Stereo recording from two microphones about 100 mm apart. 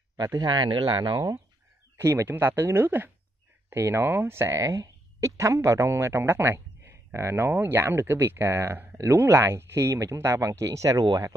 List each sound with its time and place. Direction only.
0.2 s speech: 45° right (ahead or behind)
2.0 s speech: 25° right (ahead or behind)